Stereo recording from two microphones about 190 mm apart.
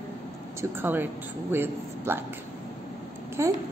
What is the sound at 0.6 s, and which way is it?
A woman's voice, 10° right (ahead or behind).